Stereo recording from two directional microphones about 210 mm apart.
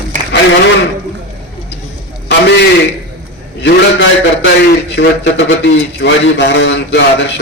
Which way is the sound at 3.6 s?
60° left (ahead or behind).